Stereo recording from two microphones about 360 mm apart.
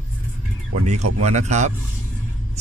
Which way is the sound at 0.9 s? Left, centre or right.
Centre.